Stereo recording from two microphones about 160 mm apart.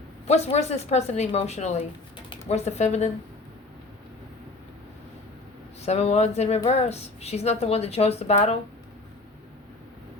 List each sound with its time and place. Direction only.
0.3 s a woman's voice: 45° left (ahead or behind)
5.8 s a woman's voice: 40° left (ahead or behind)